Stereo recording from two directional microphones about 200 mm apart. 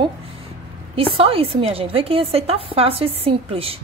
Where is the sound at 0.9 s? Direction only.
25° right (ahead or behind).